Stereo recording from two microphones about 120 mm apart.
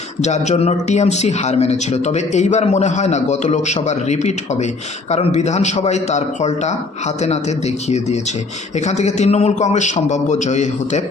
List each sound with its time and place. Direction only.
0.2 s a man's voice: 70° left (ahead or behind)
7.9 s a man's voice: 65° left (ahead or behind)